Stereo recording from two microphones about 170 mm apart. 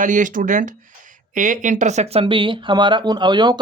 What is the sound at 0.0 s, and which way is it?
Speech, 50° right (ahead or behind).